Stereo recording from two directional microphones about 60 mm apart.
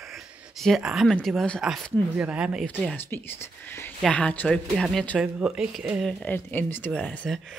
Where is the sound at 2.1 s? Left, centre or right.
Right.